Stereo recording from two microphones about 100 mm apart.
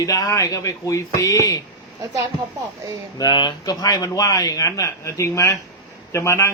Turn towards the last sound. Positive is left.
turn(degrees=30)  # may be behind; listen again after turning